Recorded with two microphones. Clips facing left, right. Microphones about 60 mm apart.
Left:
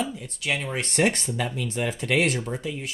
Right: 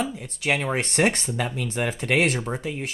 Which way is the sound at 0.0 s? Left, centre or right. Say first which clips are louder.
Right 2 dB; right.